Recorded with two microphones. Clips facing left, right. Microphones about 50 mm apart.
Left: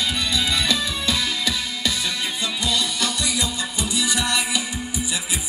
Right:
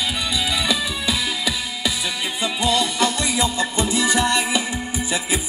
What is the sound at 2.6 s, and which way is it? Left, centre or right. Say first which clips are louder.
Music: right 6 dB; right.